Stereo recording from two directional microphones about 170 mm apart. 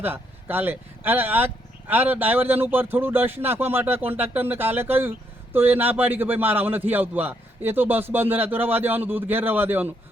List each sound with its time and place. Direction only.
0.0 s a man's voice: 10° right (ahead or behind)